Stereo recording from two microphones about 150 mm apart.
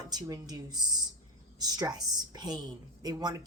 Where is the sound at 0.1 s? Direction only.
25° right (ahead or behind).